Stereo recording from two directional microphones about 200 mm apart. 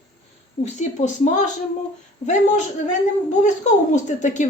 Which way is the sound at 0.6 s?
35° left (ahead or behind).